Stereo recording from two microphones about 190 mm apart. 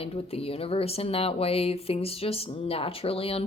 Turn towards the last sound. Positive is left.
turn(degrees=30)  # may be behind; listen again after turning